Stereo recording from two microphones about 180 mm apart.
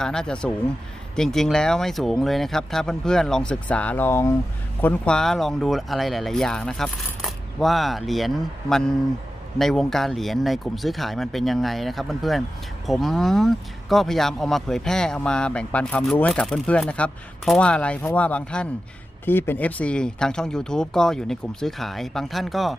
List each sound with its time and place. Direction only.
0.0 s speech: 5° left (ahead or behind)